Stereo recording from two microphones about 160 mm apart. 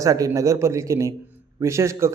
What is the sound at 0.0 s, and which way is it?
A man's voice, 20° right (ahead or behind).